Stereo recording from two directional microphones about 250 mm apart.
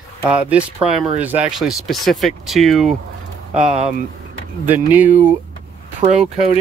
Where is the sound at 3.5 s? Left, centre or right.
Right.